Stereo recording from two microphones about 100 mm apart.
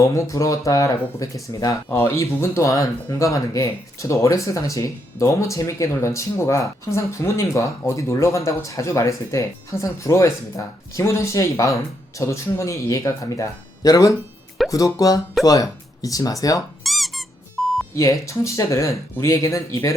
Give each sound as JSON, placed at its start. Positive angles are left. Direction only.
{"t": 0.0, "sound": "speech", "side_deg": 30}
{"t": 1.9, "sound": "speech", "side_deg": 25}
{"t": 16.8, "sound": "squeak", "side_deg": 0}
{"t": 17.6, "sound": "beep", "side_deg": 0}
{"t": 17.9, "sound": "speech", "side_deg": 30}